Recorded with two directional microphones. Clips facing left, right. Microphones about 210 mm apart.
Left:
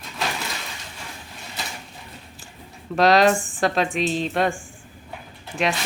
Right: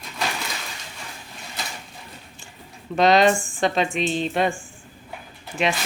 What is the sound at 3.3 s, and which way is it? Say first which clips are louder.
Speech: left 2 dB; 20° left (ahead or behind).